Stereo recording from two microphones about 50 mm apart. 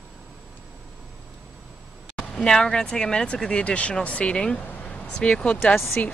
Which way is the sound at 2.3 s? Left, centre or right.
Centre.